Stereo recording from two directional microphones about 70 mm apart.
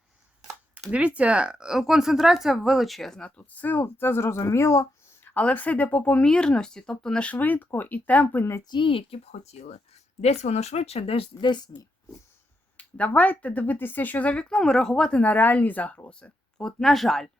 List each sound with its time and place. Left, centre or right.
0.9 s speech: centre; by 5.3 s left
5.3 s speech: left
7.3 s speech: left
8.7 s speech: left
11.4 s speech: left
12.7 s speech: left
15.2 s speech: left; by 17.2 s centre